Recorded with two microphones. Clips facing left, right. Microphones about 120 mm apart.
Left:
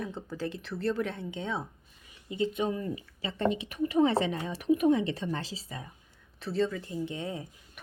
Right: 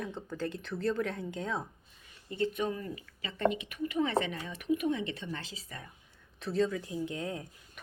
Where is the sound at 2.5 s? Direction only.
25° left (ahead or behind).